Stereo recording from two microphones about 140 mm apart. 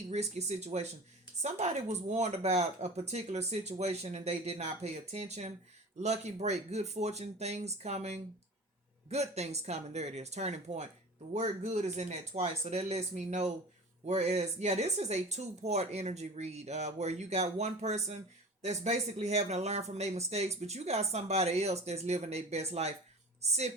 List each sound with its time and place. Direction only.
0.1 s speech: 50° right (ahead or behind)